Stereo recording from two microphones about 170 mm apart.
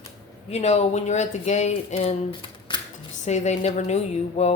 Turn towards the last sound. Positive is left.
turn(degrees=40)  # may be behind; listen again after turning